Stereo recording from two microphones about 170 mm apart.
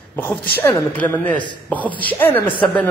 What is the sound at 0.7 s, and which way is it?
Speech, 10° left (ahead or behind).